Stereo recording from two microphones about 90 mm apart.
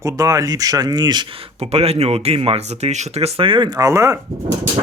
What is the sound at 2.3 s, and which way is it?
Speech, 90° right.